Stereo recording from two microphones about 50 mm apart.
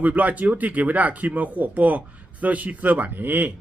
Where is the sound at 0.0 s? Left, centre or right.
Right.